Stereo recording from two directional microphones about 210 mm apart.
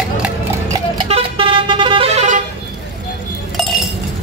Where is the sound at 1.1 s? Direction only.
25° right (ahead or behind).